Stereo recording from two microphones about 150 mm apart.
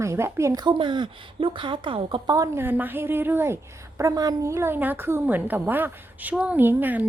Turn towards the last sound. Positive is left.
turn(degrees=-10)  # may be behind; listen again after turning